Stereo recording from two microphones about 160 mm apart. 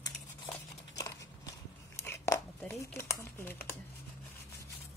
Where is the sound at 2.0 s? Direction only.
20° left (ahead or behind).